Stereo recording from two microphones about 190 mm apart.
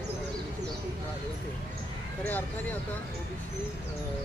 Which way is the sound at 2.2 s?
10° left (ahead or behind).